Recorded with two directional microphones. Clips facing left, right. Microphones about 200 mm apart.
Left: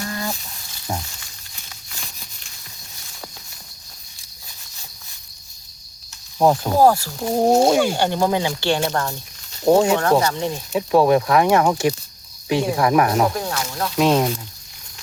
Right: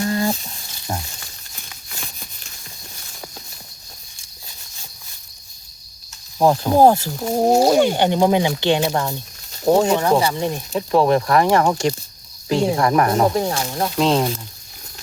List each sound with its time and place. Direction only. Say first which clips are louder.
0.0 s frying: right 7 dB; 25° right (ahead or behind)
0.9 s frying: even; 10° left (ahead or behind)
6.4 s speech: even; centre (ahead or behind)
6.7 s speech: right 4 dB; 20° right (ahead or behind)
7.2 s speech: left 3 dB; centre (ahead or behind)
7.9 s speech: right 3 dB; 15° right (ahead or behind)
9.6 s speech: even; 5° left (ahead or behind)
10.0 s speech: even; 10° right (ahead or behind)
10.7 s speech: left 1 dB; 5° left (ahead or behind)
13.3 s speech: right 5 dB; 25° right (ahead or behind)